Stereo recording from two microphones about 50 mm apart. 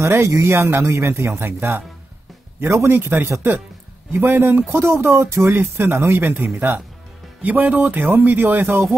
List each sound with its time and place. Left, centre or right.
0.2 s speech: right
1.3 s speech: right
2.6 s speech: right
2.9 s speech: right
5.6 s speech: right
7.4 s speech: right